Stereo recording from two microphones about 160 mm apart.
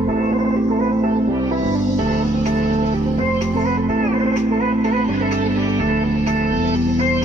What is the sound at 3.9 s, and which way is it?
Music, 50° right (ahead or behind).